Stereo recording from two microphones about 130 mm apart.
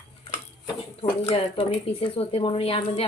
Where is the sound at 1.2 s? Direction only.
45° left (ahead or behind).